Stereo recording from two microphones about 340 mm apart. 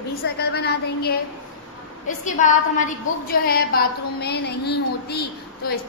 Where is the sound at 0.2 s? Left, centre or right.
Left.